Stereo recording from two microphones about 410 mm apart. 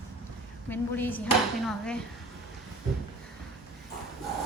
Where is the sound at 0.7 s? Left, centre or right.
Centre.